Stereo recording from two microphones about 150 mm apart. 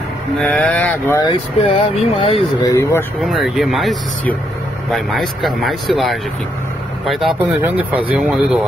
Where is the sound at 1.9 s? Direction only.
40° left (ahead or behind).